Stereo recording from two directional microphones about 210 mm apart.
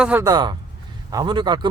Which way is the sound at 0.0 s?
10° right (ahead or behind).